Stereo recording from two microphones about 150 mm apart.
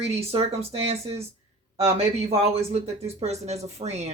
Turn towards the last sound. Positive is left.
turn(degrees=-45)  # may be behind; listen again after turning